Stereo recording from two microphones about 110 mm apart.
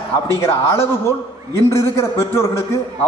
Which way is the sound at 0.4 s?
25° left (ahead or behind).